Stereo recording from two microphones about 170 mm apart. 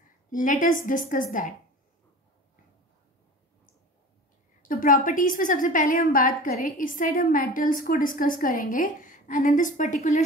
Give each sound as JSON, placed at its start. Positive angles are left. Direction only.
{"t": 0.3, "sound": "a woman's voice", "side_deg": 50}
{"t": 4.6, "sound": "a woman's voice", "side_deg": 55}